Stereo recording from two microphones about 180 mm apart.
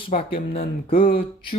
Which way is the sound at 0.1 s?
35° left (ahead or behind).